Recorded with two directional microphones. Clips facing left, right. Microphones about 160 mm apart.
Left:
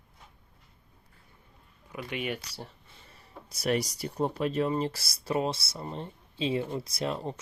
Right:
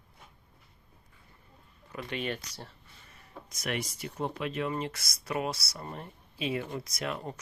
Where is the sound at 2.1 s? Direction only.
10° left (ahead or behind).